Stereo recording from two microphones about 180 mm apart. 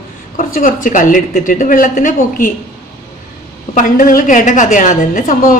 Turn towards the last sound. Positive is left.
turn(degrees=45)  # may be behind; listen again after turning